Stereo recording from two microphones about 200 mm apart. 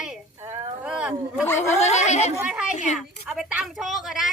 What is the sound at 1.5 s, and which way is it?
Speech, 35° left (ahead or behind).